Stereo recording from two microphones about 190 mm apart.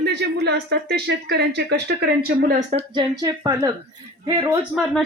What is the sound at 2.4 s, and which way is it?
Speech, 50° right (ahead or behind).